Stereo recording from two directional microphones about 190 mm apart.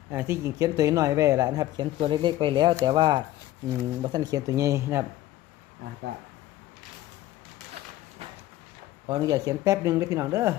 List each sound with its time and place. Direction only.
0.1 s speech: 10° right (ahead or behind)
9.0 s speech: 20° right (ahead or behind)